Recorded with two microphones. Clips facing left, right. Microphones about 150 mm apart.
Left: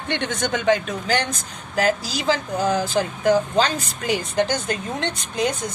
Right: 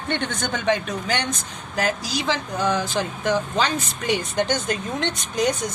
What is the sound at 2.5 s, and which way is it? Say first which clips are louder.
A woman's voice: even; 30° left (ahead or behind).